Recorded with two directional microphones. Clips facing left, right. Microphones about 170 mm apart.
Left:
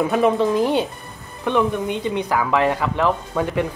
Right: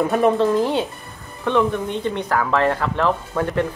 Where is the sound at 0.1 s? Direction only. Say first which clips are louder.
Right 1 dB; 5° left (ahead or behind).